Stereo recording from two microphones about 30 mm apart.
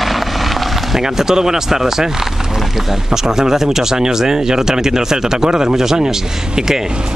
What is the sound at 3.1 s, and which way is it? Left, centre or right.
Speech, centre.